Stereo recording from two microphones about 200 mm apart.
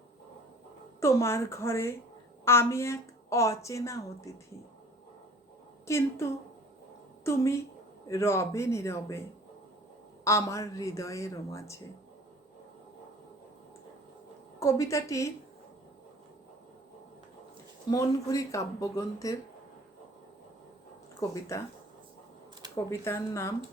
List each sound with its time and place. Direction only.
0.9 s a woman's voice: 15° left (ahead or behind)
5.8 s a woman's voice: 15° left (ahead or behind)
10.2 s a woman's voice: 15° left (ahead or behind)
14.6 s a woman's voice: 15° left (ahead or behind)
17.9 s a woman's voice: 15° left (ahead or behind)
21.2 s a woman's voice: 15° left (ahead or behind)
22.7 s a woman's voice: 15° left (ahead or behind)